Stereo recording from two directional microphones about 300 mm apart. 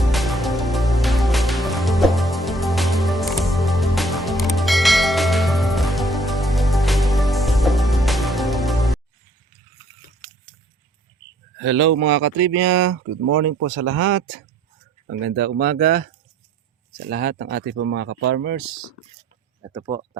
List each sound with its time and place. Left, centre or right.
0.0 s music: centre
11.6 s speech: right